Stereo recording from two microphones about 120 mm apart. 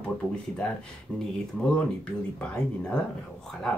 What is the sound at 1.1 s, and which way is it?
Speech, 15° right (ahead or behind).